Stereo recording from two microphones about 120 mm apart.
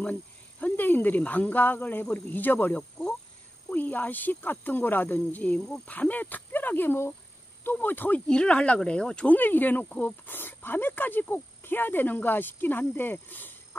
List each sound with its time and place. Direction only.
0.0 s speech: 15° left (ahead or behind)